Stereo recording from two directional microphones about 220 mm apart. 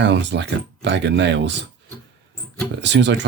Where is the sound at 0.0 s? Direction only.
55° right (ahead or behind).